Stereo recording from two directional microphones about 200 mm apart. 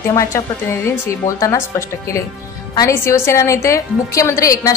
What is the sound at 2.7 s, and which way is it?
A woman's voice, 15° left (ahead or behind).